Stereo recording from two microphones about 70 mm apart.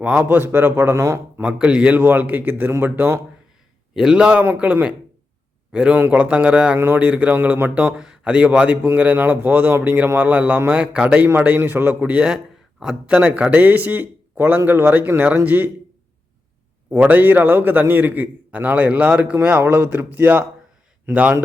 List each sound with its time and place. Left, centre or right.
0.0 s a man's voice: centre; by 1.2 s right
1.4 s a man's voice: centre
3.9 s a man's voice: centre
6.7 s a man's voice: right
7.0 s a man's voice: right
7.9 s a man's voice: centre; by 12.2 s right
12.8 s speech: centre
13.1 s a man's voice: right
16.9 s a man's voice: right
21.1 s a man's voice: centre